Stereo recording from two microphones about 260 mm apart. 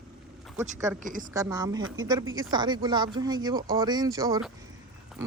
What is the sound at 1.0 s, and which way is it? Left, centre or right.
Speech, right.